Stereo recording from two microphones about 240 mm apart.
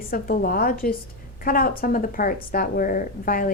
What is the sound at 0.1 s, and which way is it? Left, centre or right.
A woman's voice, left.